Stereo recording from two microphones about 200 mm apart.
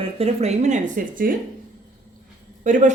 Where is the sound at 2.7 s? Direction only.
40° right (ahead or behind).